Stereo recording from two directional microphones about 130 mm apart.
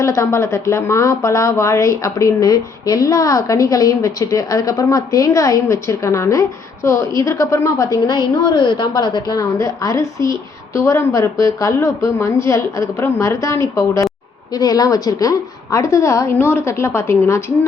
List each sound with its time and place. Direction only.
0.0 s speech: 20° left (ahead or behind)